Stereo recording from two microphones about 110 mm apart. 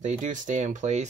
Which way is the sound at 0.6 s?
90° right.